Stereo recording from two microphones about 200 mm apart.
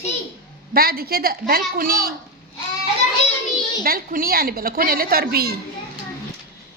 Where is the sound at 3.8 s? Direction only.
45° right (ahead or behind).